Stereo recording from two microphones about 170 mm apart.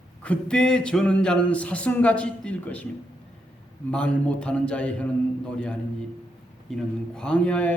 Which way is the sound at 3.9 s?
5° left (ahead or behind).